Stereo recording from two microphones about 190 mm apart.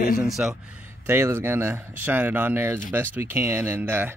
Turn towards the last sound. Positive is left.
turn(degrees=-10)  # may be behind; listen again after turning